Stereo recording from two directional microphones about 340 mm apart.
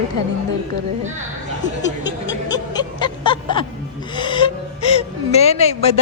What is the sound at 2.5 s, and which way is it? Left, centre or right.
Speech, centre.